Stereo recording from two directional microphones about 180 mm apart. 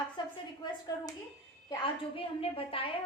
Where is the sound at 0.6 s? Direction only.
20° left (ahead or behind).